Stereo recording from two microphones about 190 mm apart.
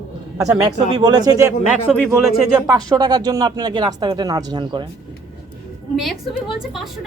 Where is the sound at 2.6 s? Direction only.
20° right (ahead or behind).